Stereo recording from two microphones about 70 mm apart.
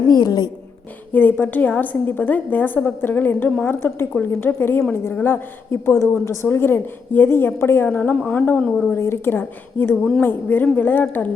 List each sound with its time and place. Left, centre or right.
0.1 s a woman's voice: left
1.1 s a woman's voice: left
8.9 s a woman's voice: left